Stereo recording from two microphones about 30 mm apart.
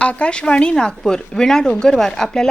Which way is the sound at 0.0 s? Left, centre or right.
Left.